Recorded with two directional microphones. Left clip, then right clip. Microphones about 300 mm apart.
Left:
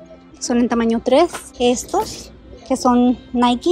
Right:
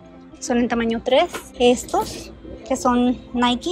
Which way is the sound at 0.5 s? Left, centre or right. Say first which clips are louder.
Left 3 dB; centre.